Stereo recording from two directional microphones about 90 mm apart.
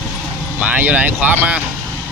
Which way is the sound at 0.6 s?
15° right (ahead or behind).